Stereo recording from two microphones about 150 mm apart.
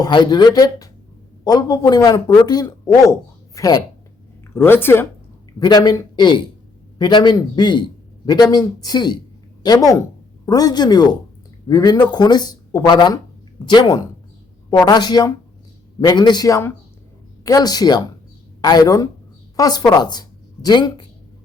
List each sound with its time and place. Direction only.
0.0 s speech: 30° left (ahead or behind); by 5.0 s 15° left (ahead or behind)
5.5 s a woman's voice: 25° left (ahead or behind)